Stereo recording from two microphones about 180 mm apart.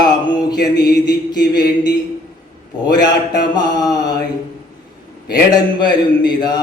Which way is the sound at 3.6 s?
25° left (ahead or behind).